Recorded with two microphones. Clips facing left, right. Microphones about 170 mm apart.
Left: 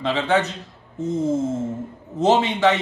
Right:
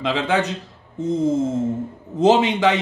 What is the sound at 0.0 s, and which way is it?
Speech, 15° right (ahead or behind).